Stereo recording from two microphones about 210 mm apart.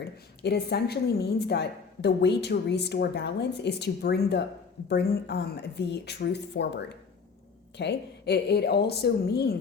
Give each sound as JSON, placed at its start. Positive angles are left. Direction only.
{"t": 0.4, "sound": "a woman's voice", "side_deg": 50}